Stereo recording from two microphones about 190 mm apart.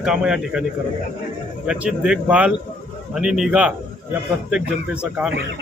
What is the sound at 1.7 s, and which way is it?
A man's voice, 5° right (ahead or behind).